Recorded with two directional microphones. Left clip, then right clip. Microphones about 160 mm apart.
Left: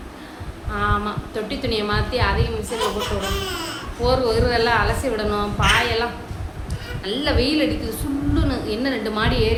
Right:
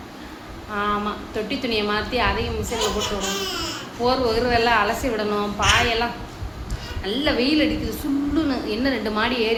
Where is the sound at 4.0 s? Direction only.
25° right (ahead or behind).